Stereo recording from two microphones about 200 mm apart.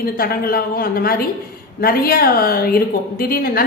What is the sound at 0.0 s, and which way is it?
Speech, 50° left (ahead or behind).